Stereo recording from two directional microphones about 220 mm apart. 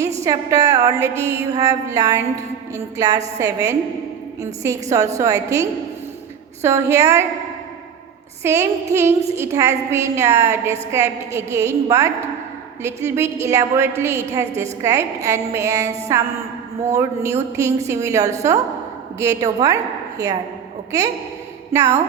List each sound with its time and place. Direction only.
0.3 s a woman's voice: 15° right (ahead or behind)
8.4 s a woman's voice: 10° right (ahead or behind)
21.7 s a woman's voice: 15° right (ahead or behind)